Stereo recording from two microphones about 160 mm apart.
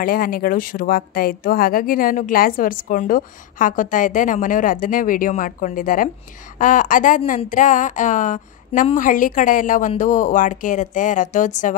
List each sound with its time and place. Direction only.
0.0 s a woman's voice: 65° left (ahead or behind)